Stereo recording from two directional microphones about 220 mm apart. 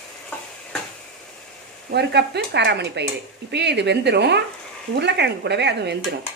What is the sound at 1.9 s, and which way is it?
Speech, 50° right (ahead or behind).